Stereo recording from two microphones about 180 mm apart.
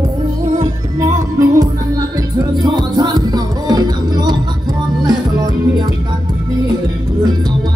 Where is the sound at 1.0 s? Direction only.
20° right (ahead or behind).